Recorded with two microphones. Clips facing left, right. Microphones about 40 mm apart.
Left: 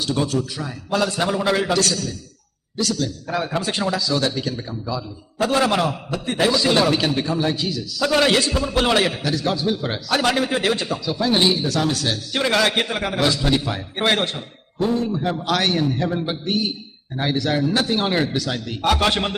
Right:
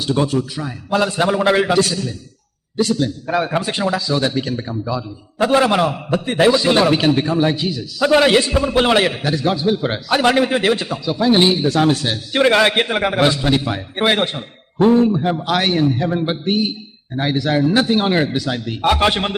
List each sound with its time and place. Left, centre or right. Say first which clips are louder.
0.0 s a man's voice: right 4 dB; centre
13.5 s a man's voice: right 3 dB; centre
14.8 s speech: right 8 dB; right
15.1 s a man's voice: right 4 dB; centre